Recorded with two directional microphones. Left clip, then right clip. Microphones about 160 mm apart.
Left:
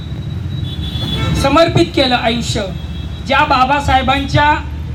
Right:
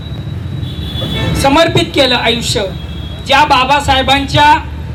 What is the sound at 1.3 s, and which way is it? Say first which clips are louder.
A woman's voice: right 2 dB; 20° right (ahead or behind).